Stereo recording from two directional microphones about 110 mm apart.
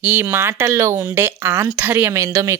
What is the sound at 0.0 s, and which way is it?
Speech, 15° right (ahead or behind).